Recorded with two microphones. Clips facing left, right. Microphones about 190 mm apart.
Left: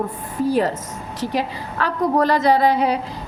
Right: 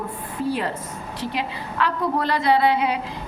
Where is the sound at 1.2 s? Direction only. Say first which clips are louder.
Left 5 dB; 40° left (ahead or behind).